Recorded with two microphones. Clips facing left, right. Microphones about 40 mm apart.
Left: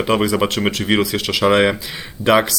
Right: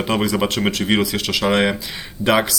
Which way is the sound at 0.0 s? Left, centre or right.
Centre.